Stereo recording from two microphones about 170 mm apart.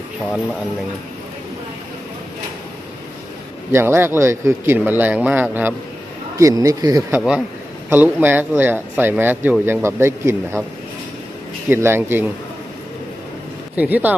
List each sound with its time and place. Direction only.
3.7 s speech: 15° right (ahead or behind)
11.7 s speech: 15° right (ahead or behind)
13.7 s speech: 10° right (ahead or behind)